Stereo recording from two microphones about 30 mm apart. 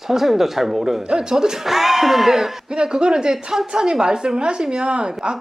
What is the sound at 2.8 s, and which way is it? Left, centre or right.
A woman's voice, right.